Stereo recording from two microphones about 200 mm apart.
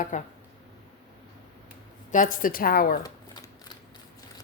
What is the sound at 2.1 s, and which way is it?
Speech, 40° left (ahead or behind).